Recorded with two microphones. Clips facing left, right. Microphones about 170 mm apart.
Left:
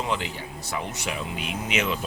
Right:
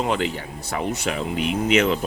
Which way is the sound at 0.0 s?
55° right (ahead or behind).